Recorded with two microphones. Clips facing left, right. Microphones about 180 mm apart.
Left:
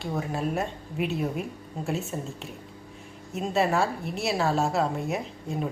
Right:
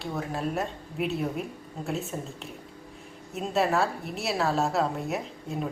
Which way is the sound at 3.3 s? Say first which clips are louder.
Left 1 dB; centre (ahead or behind).